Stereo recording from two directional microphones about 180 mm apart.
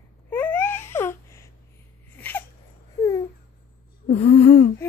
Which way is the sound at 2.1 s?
10° left (ahead or behind).